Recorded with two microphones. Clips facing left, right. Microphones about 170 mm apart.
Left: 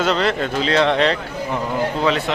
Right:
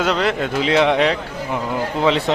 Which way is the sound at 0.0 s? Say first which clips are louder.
Even; 10° right (ahead or behind).